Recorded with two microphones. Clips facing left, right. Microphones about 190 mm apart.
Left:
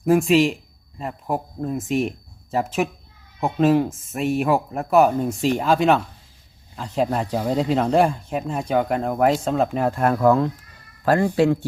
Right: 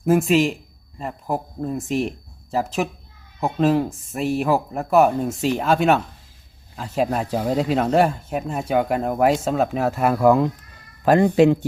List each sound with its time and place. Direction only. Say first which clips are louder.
0.0 s speech: left 1 dB; centre (ahead or behind); by 11.3 s 20° right (ahead or behind)